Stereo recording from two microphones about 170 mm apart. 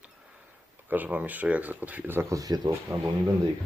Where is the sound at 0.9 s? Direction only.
10° right (ahead or behind).